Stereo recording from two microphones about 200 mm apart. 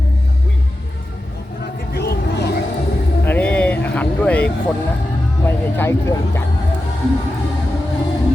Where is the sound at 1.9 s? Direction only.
55° left (ahead or behind).